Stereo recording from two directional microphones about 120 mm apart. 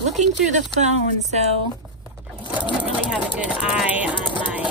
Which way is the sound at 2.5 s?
10° right (ahead or behind).